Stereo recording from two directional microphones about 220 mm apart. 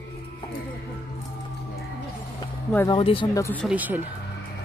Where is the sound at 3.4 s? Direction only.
10° left (ahead or behind).